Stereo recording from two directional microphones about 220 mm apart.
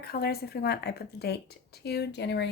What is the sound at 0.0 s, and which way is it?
Speech, 45° left (ahead or behind).